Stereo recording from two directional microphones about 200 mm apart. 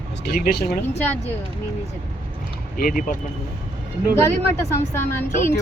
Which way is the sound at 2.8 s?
45° left (ahead or behind).